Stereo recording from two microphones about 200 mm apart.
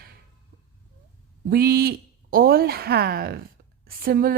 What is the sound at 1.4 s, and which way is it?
Speech, 50° right (ahead or behind).